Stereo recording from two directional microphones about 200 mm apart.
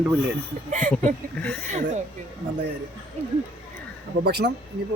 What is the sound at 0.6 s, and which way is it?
Speech, 35° right (ahead or behind).